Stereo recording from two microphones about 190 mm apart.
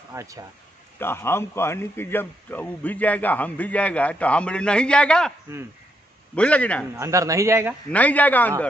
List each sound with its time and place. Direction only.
0.1 s speech: 15° right (ahead or behind)
0.9 s a man's voice: 10° left (ahead or behind)
6.3 s a man's voice: 5° left (ahead or behind)
7.0 s a man's voice: 15° right (ahead or behind)
7.9 s a man's voice: 10° left (ahead or behind)